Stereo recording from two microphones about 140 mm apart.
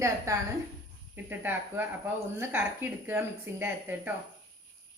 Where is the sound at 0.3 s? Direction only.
25° right (ahead or behind).